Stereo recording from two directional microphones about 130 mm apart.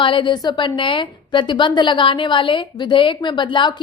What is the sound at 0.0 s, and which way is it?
A woman's voice, 40° left (ahead or behind).